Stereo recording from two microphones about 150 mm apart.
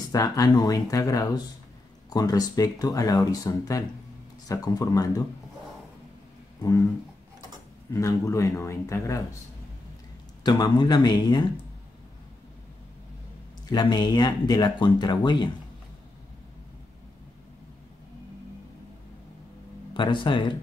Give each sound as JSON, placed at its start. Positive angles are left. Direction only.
{"t": 0.1, "sound": "speech", "side_deg": 25}
{"t": 6.6, "sound": "speech", "side_deg": 20}
{"t": 7.9, "sound": "speech", "side_deg": 20}
{"t": 10.4, "sound": "speech", "side_deg": 25}
{"t": 13.7, "sound": "speech", "side_deg": 30}
{"t": 19.9, "sound": "speech", "side_deg": 30}